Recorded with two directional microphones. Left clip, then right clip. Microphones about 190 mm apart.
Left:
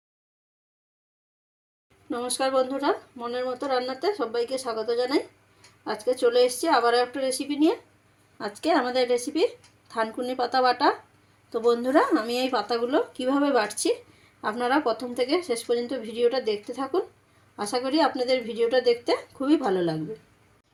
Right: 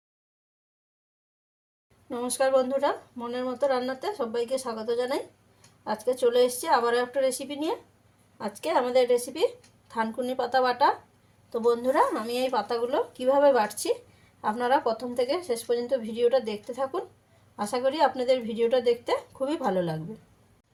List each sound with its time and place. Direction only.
2.0 s speech: 20° left (ahead or behind)